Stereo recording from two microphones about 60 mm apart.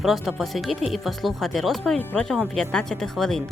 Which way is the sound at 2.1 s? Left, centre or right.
Centre.